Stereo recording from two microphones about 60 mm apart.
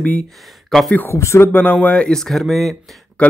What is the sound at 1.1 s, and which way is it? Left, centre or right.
Speech, left.